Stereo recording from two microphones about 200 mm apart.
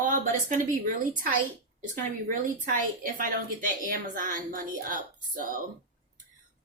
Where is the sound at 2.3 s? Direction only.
40° right (ahead or behind).